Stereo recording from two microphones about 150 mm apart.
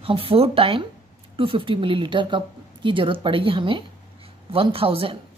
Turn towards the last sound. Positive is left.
turn(degrees=-40)  # may be behind; listen again after turning